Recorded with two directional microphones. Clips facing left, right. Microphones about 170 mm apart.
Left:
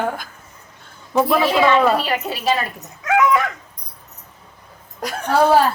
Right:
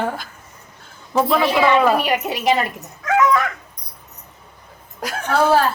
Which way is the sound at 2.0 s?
15° right (ahead or behind).